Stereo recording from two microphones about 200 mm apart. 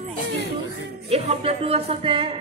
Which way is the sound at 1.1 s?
30° right (ahead or behind).